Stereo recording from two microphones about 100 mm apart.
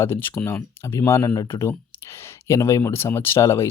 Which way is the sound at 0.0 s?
25° left (ahead or behind).